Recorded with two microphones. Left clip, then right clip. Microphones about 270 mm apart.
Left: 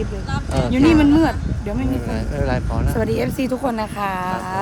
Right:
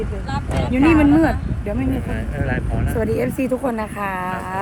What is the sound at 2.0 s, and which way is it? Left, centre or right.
Speech, left.